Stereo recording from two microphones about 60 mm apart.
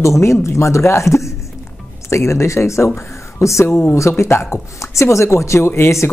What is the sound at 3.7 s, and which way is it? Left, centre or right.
Speech, left.